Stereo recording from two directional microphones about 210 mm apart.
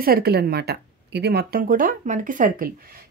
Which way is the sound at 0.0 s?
45° right (ahead or behind).